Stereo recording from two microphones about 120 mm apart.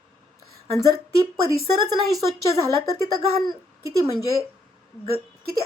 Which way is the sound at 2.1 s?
30° right (ahead or behind).